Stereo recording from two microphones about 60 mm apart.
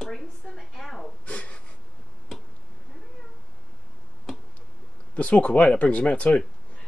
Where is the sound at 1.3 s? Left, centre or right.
Left.